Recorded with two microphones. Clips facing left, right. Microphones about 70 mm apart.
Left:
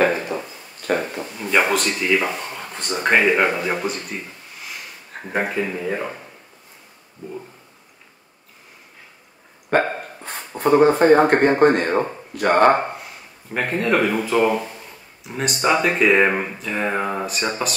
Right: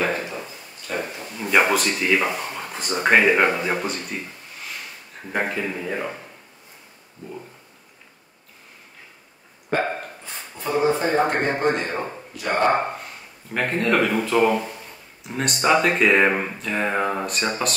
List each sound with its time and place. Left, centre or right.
0.8 s speech: left
1.3 s speech: centre
5.3 s speech: centre
10.2 s speech: left
12.7 s speech: centre